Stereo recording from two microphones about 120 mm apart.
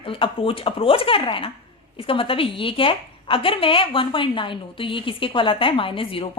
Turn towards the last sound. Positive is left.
turn(degrees=50)  # may be behind; listen again after turning